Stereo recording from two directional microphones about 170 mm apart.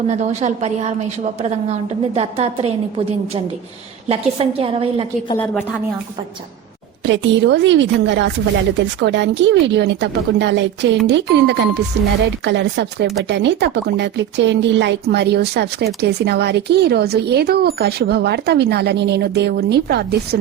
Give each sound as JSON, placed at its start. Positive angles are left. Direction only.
{"t": 0.1, "sound": "a woman's voice", "side_deg": -40}
{"t": 7.0, "sound": "a woman's voice", "side_deg": -90}